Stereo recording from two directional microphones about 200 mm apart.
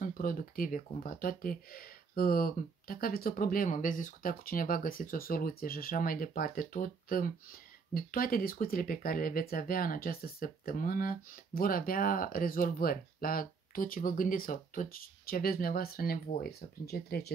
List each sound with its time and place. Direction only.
0.0 s speech: 45° left (ahead or behind)